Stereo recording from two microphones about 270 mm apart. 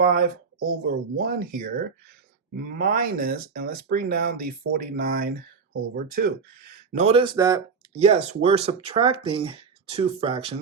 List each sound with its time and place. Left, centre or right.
0.0 s speech: right
6.9 s speech: right
7.9 s speech: right